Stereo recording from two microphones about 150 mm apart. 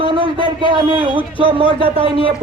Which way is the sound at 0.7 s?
35° right (ahead or behind).